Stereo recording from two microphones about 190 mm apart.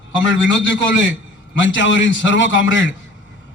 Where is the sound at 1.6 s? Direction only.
75° left (ahead or behind).